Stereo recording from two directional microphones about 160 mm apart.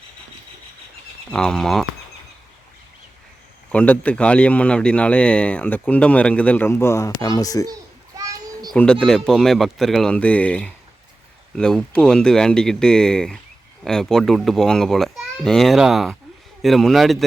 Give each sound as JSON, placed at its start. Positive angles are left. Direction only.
{"t": 1.3, "sound": "a child's voice", "side_deg": 5}
{"t": 3.7, "sound": "speech", "side_deg": 10}
{"t": 7.7, "sound": "children playing", "side_deg": -20}
{"t": 8.7, "sound": "a child's voice", "side_deg": 5}